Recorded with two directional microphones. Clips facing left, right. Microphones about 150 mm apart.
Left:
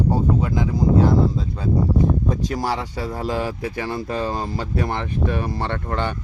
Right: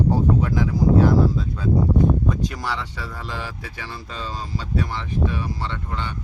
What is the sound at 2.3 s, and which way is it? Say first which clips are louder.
Speech: left 4 dB; 40° left (ahead or behind).